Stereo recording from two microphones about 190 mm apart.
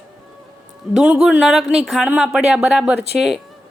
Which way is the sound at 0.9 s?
5° right (ahead or behind).